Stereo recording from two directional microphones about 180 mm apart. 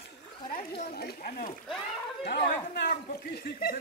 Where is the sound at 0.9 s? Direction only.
55° left (ahead or behind).